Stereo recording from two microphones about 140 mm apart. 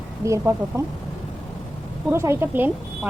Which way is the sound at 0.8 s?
20° right (ahead or behind).